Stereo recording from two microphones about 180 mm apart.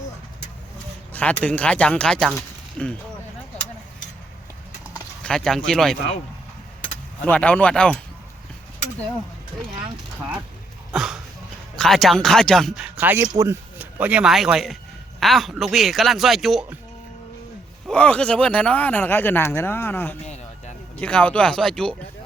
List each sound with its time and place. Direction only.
1.1 s speech: 10° left (ahead or behind)
5.2 s speech: 5° left (ahead or behind)
7.3 s speech: 10° left (ahead or behind)
10.9 s a sound: 5° right (ahead or behind)
11.8 s speech: centre (ahead or behind)
17.8 s speech: 5° left (ahead or behind)
20.2 s a sound: 40° left (ahead or behind)
20.9 s speech: 5° left (ahead or behind)